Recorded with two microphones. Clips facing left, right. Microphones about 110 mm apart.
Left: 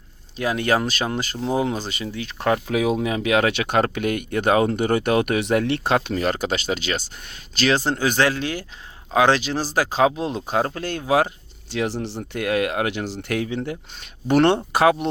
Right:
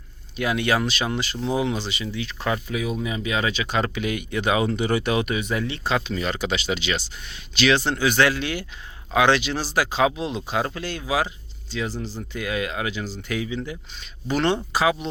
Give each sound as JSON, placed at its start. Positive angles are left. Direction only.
{"t": 0.3, "sound": "speech", "side_deg": 35}
{"t": 2.6, "sound": "speech", "side_deg": 90}
{"t": 3.0, "sound": "speech", "side_deg": 70}
{"t": 11.7, "sound": "speech", "side_deg": 65}